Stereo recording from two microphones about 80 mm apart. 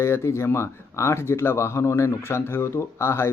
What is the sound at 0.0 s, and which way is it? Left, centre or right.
Speech, left.